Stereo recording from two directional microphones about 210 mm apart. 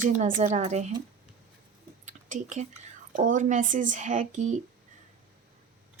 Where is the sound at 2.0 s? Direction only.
35° right (ahead or behind).